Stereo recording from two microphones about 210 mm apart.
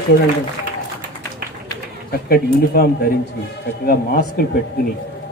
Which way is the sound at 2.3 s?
50° left (ahead or behind).